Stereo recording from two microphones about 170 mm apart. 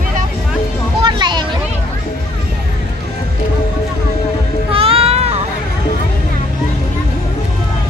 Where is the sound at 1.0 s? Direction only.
25° right (ahead or behind).